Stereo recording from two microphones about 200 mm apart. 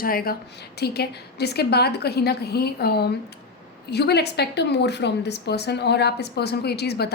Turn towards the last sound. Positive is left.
turn(degrees=55)  # may be behind; listen again after turning